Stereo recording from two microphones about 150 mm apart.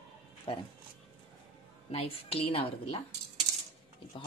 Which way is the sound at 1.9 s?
40° left (ahead or behind).